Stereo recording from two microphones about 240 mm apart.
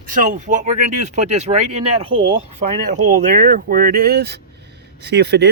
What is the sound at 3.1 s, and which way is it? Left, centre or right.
Speech, right.